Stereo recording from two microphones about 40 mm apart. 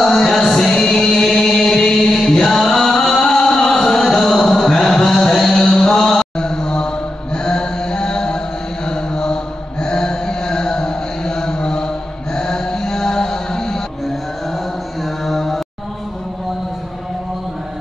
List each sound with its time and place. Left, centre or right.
0.0 s music: centre
6.3 s mantra: centre
15.2 s mantra: centre